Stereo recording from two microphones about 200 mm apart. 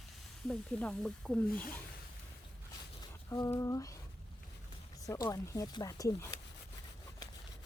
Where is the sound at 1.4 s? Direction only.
45° left (ahead or behind).